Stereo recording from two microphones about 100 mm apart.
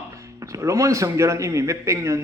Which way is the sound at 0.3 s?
30° right (ahead or behind).